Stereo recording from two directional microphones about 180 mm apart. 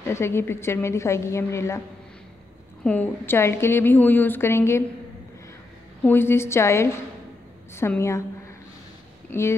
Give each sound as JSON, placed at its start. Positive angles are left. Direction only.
{"t": 0.0, "sound": "a woman's voice", "side_deg": 15}
{"t": 2.8, "sound": "a woman's voice", "side_deg": 10}
{"t": 6.0, "sound": "a woman's voice", "side_deg": 10}
{"t": 9.3, "sound": "a woman's voice", "side_deg": 15}